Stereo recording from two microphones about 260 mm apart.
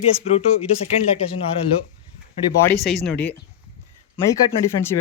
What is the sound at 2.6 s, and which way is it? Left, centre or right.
Speech, centre.